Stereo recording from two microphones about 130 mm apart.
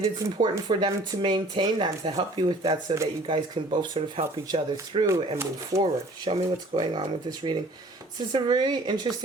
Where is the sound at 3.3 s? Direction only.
40° right (ahead or behind).